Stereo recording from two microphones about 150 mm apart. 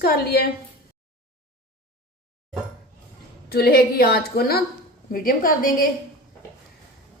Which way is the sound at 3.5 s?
90° left.